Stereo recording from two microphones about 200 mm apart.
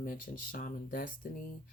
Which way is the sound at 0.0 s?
45° left (ahead or behind).